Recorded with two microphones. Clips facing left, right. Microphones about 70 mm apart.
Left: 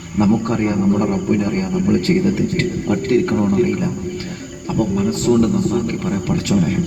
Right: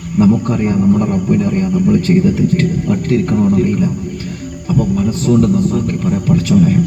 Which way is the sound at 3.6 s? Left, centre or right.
Left.